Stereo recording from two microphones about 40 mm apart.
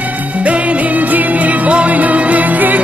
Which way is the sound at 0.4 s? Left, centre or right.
Right.